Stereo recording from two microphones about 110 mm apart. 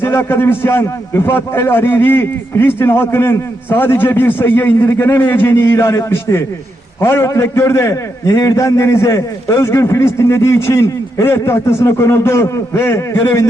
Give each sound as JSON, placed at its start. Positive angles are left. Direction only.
{"t": 0.0, "sound": "a man's voice", "side_deg": 20}